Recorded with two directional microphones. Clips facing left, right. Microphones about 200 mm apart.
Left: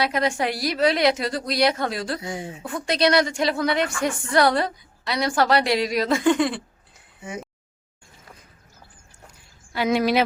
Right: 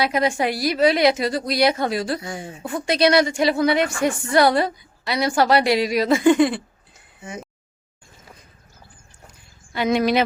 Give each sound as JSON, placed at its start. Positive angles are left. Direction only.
{"t": 0.0, "sound": "a woman's voice", "side_deg": -5}
{"t": 2.2, "sound": "speech", "side_deg": 20}
{"t": 2.6, "sound": "a woman's voice", "side_deg": -5}
{"t": 9.7, "sound": "a woman's voice", "side_deg": 5}